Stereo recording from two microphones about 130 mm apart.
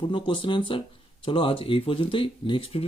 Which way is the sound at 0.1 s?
40° left (ahead or behind).